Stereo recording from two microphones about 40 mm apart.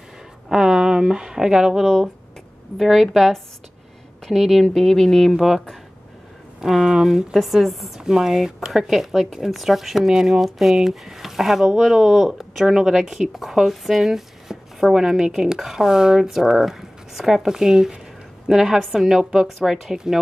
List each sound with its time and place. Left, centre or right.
0.5 s speech: centre
2.8 s speech: centre
6.6 s a woman's voice: centre
7.3 s speech: centre
8.0 s a woman's voice: centre